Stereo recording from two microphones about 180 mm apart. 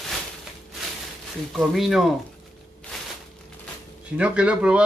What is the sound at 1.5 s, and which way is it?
Speech, centre (ahead or behind).